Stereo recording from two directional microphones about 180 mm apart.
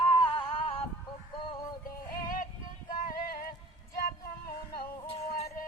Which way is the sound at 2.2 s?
55° left (ahead or behind).